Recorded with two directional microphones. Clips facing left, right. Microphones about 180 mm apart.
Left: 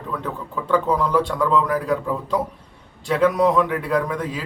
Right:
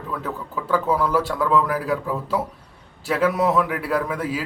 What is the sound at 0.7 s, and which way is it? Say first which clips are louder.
Speech: left 1 dB; 5° right (ahead or behind).